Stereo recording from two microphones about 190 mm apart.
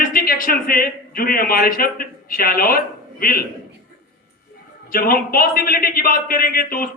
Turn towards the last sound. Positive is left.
turn(degrees=50)  # may be behind; listen again after turning